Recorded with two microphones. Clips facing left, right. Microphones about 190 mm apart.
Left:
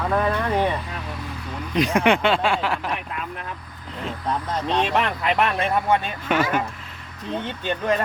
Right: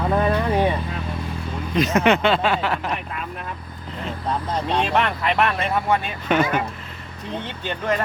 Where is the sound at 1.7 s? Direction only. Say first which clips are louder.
Right 1 dB; 10° left (ahead or behind).